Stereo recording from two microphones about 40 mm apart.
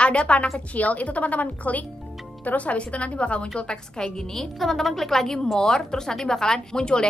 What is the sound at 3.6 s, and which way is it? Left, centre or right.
A woman's voice, centre.